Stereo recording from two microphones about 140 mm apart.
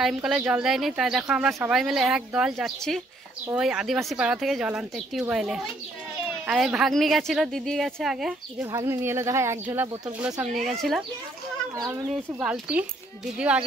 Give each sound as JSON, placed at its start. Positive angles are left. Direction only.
{"t": 0.0, "sound": "a woman's voice", "side_deg": -5}
{"t": 8.7, "sound": "speech", "side_deg": -20}
{"t": 10.8, "sound": "a woman's voice", "side_deg": 0}
{"t": 11.7, "sound": "speech", "side_deg": -25}
{"t": 12.4, "sound": "speech", "side_deg": -10}